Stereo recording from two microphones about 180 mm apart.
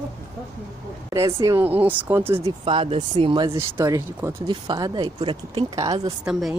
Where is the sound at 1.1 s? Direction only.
15° right (ahead or behind).